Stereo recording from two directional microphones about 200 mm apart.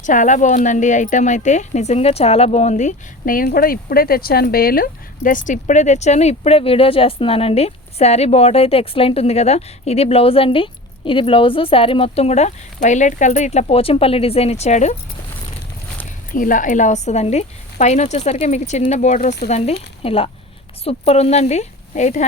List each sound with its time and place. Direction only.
0.0 s speech: 40° left (ahead or behind)
16.3 s speech: 40° left (ahead or behind)